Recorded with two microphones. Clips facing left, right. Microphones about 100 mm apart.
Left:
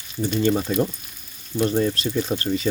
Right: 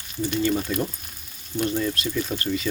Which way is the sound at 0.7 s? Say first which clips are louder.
Left 4 dB; 40° left (ahead or behind).